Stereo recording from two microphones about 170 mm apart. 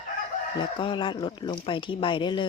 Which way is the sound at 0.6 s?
30° left (ahead or behind).